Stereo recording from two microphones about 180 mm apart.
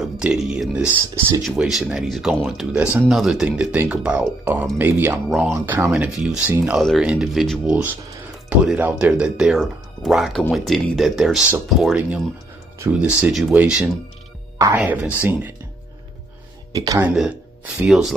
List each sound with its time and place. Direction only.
0.0 s speech: 5° right (ahead or behind)
14.8 s speech: 10° right (ahead or behind)
16.7 s speech: 20° right (ahead or behind)
17.1 s speech: 5° right (ahead or behind)